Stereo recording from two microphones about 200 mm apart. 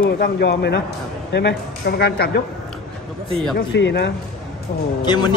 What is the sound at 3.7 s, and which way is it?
Speech, 60° left (ahead or behind).